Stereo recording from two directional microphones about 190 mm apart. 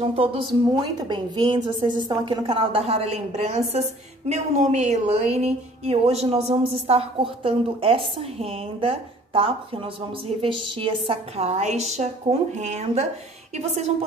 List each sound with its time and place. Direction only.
0.0 s a woman's voice: 30° right (ahead or behind)